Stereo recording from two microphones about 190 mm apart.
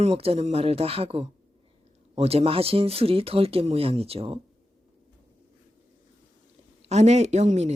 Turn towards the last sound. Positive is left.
turn(degrees=-35)  # may be behind; listen again after turning